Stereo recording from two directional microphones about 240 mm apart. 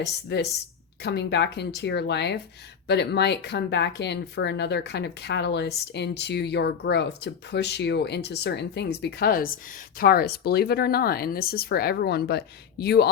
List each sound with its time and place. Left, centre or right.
0.0 s speech: left